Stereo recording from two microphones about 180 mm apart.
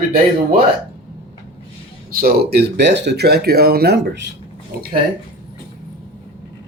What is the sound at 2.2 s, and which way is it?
Speech, 65° right (ahead or behind).